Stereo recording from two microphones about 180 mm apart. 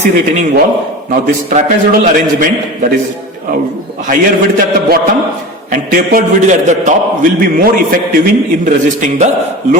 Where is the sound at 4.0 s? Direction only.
50° right (ahead or behind).